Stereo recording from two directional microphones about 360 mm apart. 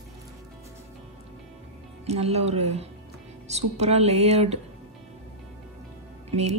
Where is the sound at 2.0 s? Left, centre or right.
Centre.